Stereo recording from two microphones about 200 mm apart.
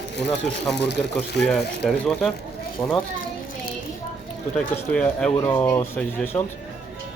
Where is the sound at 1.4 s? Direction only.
5° left (ahead or behind).